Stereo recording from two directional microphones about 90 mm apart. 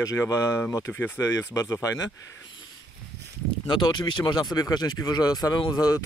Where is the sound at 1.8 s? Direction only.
40° left (ahead or behind).